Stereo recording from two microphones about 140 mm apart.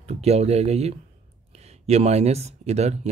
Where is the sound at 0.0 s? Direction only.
50° right (ahead or behind).